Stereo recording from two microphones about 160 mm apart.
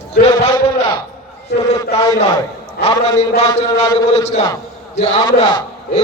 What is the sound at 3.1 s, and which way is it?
Speech, 40° left (ahead or behind).